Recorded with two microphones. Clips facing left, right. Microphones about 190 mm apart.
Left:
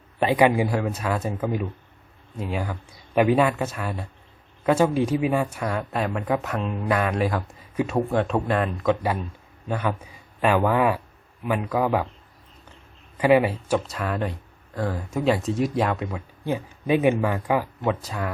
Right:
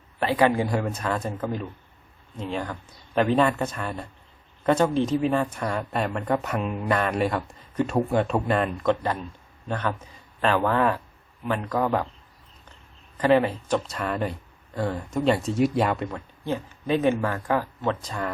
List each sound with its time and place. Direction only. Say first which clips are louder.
0.2 s a man's voice: left 2 dB; 15° left (ahead or behind)
13.1 s speech: left 2 dB; 10° left (ahead or behind)
16.4 s speech: left 2 dB; 15° left (ahead or behind)